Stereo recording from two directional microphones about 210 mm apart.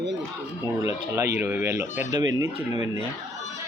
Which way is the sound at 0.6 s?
15° right (ahead or behind).